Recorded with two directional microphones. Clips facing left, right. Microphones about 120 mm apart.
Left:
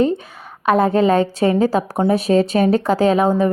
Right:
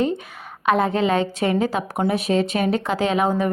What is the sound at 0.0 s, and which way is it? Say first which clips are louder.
A woman's voice: left 5 dB; 30° left (ahead or behind).